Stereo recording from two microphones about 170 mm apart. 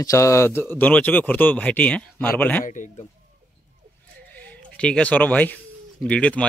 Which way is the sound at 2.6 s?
50° left (ahead or behind).